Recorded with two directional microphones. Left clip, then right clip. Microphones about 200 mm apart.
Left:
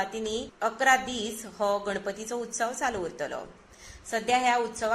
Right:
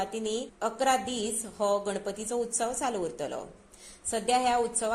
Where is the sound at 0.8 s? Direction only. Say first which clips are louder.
Left 3 dB; 30° right (ahead or behind).